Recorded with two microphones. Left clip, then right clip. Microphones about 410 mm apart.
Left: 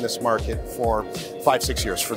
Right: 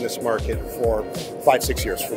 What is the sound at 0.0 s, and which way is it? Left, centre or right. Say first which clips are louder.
Speech: left 1 dB; left.